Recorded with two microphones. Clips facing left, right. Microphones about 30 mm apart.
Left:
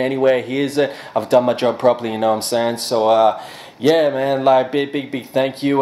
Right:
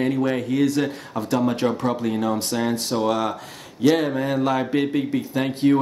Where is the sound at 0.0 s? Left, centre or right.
Left.